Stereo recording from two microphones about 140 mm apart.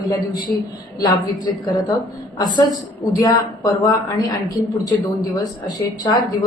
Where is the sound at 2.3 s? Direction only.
30° left (ahead or behind).